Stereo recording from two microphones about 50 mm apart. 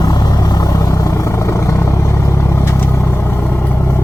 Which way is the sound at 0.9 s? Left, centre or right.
Left.